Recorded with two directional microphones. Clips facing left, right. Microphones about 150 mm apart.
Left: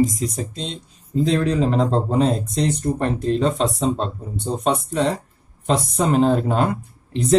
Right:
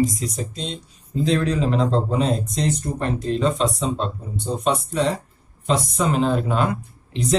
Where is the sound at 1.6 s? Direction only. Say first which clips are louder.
Left 2 dB; 45° left (ahead or behind).